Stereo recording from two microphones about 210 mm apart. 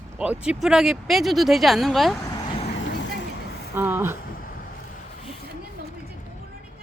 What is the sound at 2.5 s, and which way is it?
Vehicle, 25° left (ahead or behind).